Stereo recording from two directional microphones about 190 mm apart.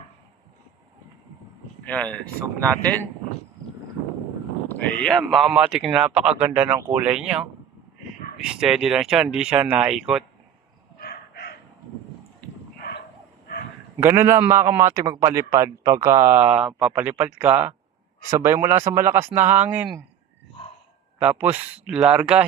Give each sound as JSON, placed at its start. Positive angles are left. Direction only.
{"t": 1.8, "sound": "speech", "side_deg": 5}
{"t": 4.7, "sound": "speech", "side_deg": 5}
{"t": 11.0, "sound": "a sound", "side_deg": 55}
{"t": 14.0, "sound": "a man's voice", "side_deg": -15}
{"t": 21.2, "sound": "speech", "side_deg": -10}